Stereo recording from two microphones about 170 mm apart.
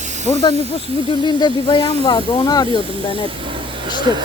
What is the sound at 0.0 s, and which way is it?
Snake, 45° right (ahead or behind).